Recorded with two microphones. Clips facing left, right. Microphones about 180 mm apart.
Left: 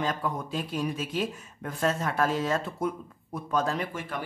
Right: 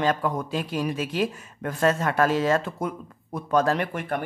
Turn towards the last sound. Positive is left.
turn(degrees=-60)  # may be behind; listen again after turning